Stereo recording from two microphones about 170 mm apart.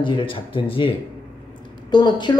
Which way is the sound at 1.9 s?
25° left (ahead or behind).